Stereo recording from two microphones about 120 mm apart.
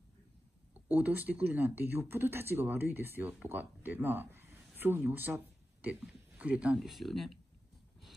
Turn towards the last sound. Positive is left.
turn(degrees=0)  # may be behind; listen again after turning